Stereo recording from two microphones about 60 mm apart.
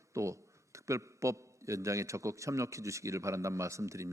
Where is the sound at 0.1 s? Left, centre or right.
Right.